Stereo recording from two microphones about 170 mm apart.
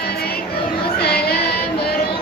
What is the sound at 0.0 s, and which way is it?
Music, 65° left (ahead or behind).